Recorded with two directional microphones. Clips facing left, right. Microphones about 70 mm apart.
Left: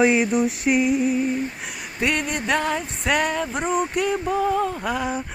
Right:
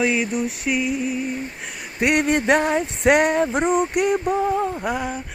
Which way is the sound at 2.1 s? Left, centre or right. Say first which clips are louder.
Right 9 dB; right.